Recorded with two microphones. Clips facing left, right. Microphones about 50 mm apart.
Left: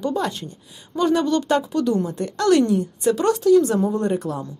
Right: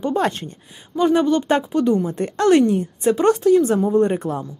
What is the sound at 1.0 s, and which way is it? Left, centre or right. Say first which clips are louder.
Speech: right 2 dB; centre.